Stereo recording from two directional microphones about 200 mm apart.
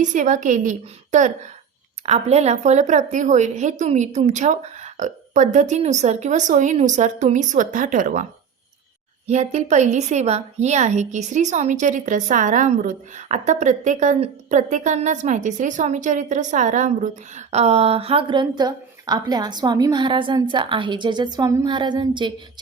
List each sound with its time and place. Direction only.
0.0 s a woman's voice: 40° right (ahead or behind); by 22.3 s 25° right (ahead or behind)